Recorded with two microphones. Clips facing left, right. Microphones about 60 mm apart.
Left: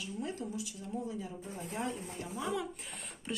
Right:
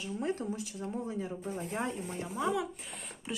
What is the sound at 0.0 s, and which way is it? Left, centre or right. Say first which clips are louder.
Speech: right 5 dB; right.